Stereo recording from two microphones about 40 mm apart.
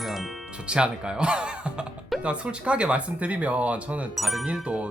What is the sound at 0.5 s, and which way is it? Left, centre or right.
Speech, right.